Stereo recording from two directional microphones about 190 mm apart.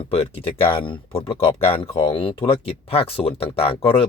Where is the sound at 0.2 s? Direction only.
30° left (ahead or behind).